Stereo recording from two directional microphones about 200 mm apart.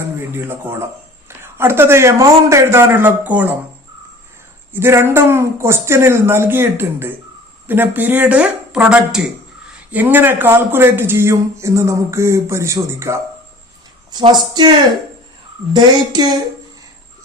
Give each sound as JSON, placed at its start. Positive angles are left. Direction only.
{"t": 0.2, "sound": "a man's voice", "side_deg": -10}
{"t": 4.7, "sound": "a man's voice", "side_deg": -10}
{"t": 15.7, "sound": "speech", "side_deg": -20}